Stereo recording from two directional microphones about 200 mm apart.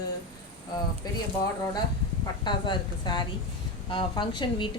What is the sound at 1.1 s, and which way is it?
Speech, 20° left (ahead or behind).